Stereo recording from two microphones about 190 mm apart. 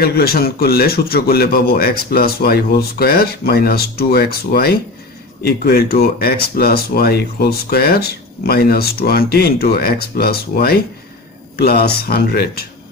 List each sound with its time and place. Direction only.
0.0 s speech: 55° left (ahead or behind)